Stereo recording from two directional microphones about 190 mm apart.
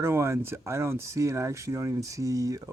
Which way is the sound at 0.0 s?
15° right (ahead or behind).